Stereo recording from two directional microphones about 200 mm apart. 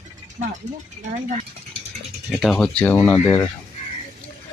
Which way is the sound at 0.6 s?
35° right (ahead or behind).